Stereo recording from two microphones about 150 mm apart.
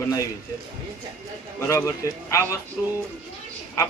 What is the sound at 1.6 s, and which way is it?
Speech, 20° left (ahead or behind).